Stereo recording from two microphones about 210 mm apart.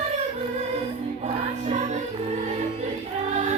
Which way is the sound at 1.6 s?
35° right (ahead or behind).